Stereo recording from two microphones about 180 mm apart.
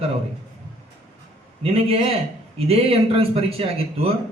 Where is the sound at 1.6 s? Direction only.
35° right (ahead or behind).